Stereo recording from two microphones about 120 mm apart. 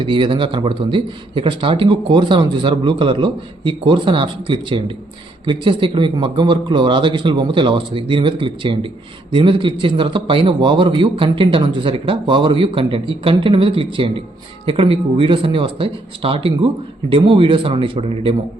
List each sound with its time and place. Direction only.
0.0 s a man's voice: 45° right (ahead or behind)